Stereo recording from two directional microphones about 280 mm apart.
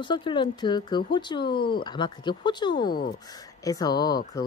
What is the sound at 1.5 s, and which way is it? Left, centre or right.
Speech, left.